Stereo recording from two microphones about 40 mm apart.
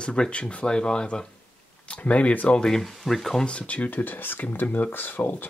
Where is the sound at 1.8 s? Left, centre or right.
Left.